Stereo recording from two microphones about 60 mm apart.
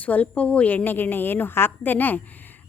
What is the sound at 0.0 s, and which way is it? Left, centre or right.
A woman's voice, left.